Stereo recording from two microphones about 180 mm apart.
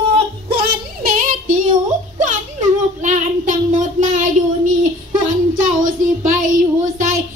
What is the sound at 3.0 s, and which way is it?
Child singing, 45° right (ahead or behind).